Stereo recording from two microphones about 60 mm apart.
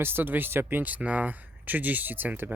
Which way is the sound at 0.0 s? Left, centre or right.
Right.